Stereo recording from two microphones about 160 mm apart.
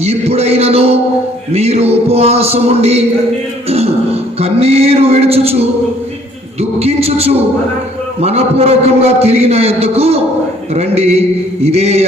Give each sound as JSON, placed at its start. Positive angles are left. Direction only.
{"t": 0.0, "sound": "a man's voice", "side_deg": -40}
{"t": 6.6, "sound": "a man's voice", "side_deg": -40}